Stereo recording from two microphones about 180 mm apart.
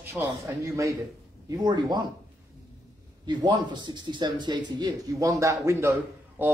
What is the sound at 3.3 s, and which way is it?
Speech, 25° right (ahead or behind).